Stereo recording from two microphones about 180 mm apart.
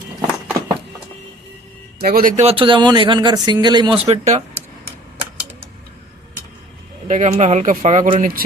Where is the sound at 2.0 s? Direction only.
50° right (ahead or behind).